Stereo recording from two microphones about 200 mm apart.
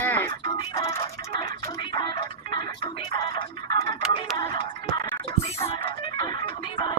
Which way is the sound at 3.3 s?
25° left (ahead or behind).